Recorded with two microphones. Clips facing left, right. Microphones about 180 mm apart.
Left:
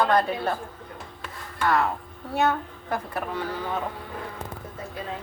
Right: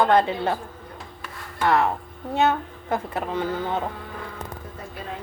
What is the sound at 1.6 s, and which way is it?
A woman's voice, 20° right (ahead or behind).